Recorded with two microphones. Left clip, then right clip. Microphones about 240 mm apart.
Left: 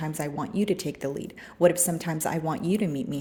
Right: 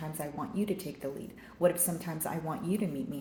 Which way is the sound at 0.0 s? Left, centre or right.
Left.